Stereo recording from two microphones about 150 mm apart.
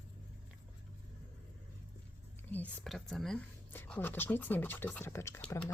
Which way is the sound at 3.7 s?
15° left (ahead or behind).